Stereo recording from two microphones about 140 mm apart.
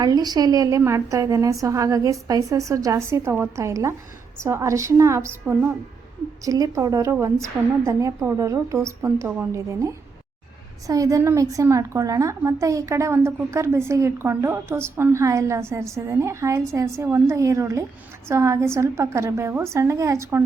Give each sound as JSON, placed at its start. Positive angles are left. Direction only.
{"t": 0.0, "sound": "a woman's voice", "side_deg": -30}